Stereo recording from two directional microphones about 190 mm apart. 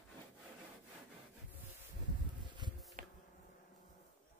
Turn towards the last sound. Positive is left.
turn(degrees=-45)  # may be behind; listen again after turning